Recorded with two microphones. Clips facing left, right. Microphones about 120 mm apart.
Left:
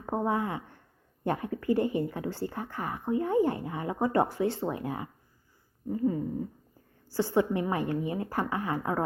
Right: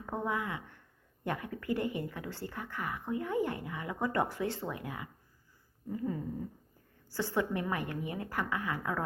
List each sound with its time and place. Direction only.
0.0 s a woman's voice: 35° left (ahead or behind)